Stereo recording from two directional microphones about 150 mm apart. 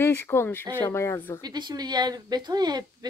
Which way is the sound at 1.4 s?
30° right (ahead or behind).